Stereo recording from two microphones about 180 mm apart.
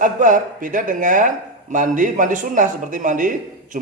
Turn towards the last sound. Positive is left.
turn(degrees=-45)  # may be behind; listen again after turning